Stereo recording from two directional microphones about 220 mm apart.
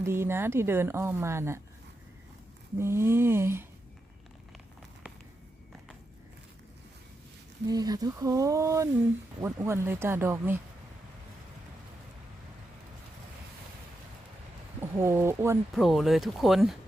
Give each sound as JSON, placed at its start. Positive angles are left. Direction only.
{"t": 0.0, "sound": "a woman's voice", "side_deg": -10}
{"t": 2.7, "sound": "a woman's voice", "side_deg": -10}
{"t": 7.7, "sound": "a woman's voice", "side_deg": -15}
{"t": 14.8, "sound": "speech", "side_deg": -10}
{"t": 15.7, "sound": "speech", "side_deg": 0}